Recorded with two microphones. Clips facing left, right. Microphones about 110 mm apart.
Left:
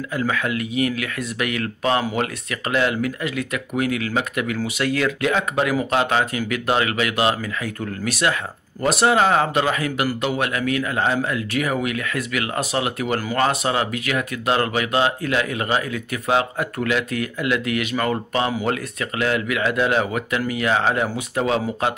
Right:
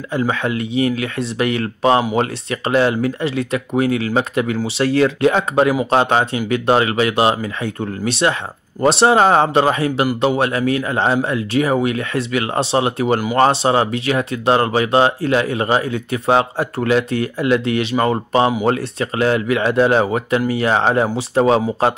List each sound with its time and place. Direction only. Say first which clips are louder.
0.1 s speech: right 5 dB; 30° right (ahead or behind)